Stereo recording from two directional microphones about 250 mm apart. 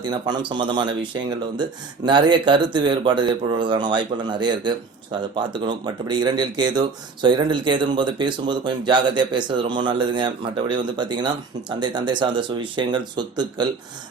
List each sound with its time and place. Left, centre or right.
0.0 s a man's voice: centre